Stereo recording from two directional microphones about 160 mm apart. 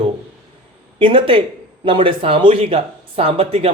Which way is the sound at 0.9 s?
30° right (ahead or behind).